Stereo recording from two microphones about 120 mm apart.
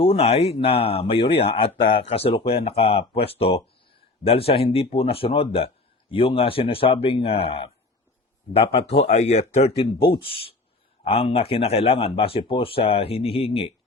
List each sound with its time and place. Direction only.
0.0 s speech: 55° left (ahead or behind)